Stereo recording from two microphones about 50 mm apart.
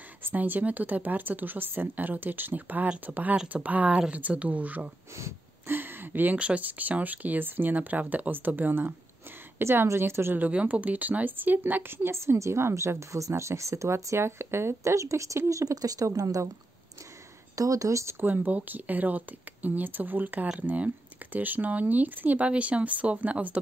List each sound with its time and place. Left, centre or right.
0.2 s speech: right
5.7 s a sound: right
6.3 s speech: right
9.6 s a woman's voice: right
10.5 s speech: right
11.9 s a woman's voice: right
13.1 s speech: right
15.8 s speech: right
17.8 s speech: right
18.2 s speech: right